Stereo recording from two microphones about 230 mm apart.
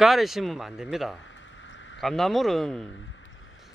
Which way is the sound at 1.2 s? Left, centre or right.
Left.